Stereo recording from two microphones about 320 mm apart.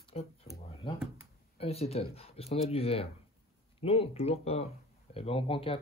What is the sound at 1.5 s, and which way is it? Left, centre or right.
Speech, centre.